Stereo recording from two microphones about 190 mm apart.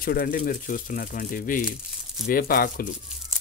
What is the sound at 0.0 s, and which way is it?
Speech, 50° left (ahead or behind).